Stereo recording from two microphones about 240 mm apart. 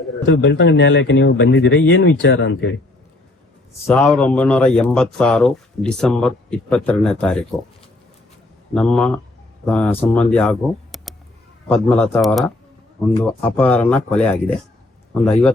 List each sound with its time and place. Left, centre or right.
0.3 s speech: left
3.8 s speech: centre
8.7 s speech: centre